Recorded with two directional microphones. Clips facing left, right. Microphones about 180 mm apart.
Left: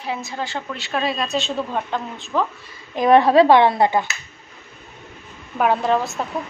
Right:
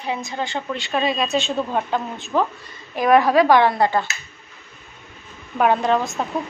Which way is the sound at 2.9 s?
25° left (ahead or behind).